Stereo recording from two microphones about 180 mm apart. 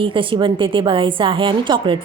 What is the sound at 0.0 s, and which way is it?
A woman's voice, 30° right (ahead or behind).